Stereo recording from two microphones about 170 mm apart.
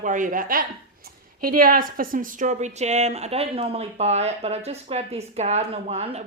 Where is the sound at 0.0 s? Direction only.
50° right (ahead or behind).